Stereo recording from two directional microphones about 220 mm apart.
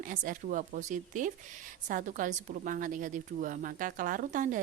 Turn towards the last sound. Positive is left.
turn(degrees=-35)  # may be behind; listen again after turning